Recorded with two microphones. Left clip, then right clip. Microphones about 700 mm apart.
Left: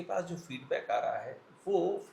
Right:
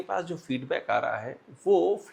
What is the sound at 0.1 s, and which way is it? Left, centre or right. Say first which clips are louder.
Speech: right 5 dB; right.